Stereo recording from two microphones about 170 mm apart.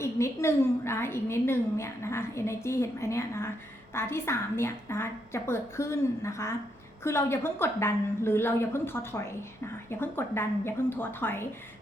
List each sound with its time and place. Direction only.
0.0 s a woman's voice: 15° left (ahead or behind)